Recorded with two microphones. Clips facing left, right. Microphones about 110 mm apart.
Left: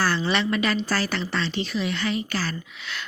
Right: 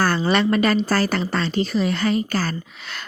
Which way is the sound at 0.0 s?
45° right (ahead or behind).